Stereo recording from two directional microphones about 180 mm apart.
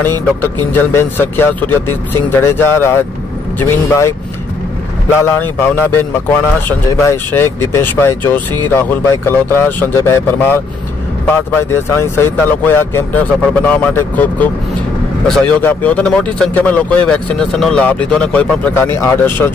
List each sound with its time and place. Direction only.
0.0 s a man's voice: 10° left (ahead or behind)
5.2 s a man's voice: 10° left (ahead or behind)
7.1 s a man's voice: 15° left (ahead or behind)